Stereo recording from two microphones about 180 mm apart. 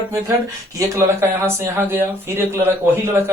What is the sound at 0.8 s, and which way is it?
Speech, 15° right (ahead or behind).